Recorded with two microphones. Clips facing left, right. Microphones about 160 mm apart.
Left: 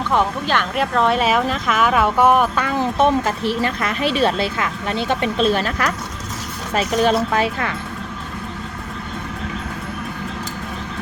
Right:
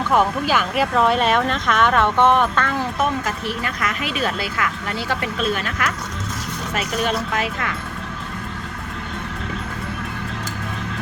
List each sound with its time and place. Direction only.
0.1 s speech: 5° right (ahead or behind); by 2.7 s 10° left (ahead or behind)
3.0 s speech: 30° left (ahead or behind)